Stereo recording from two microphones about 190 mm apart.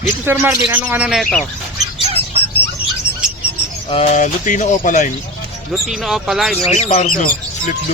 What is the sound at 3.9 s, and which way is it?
Speech, 35° left (ahead or behind).